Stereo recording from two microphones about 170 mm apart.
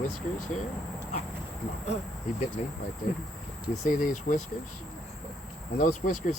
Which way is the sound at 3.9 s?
50° left (ahead or behind).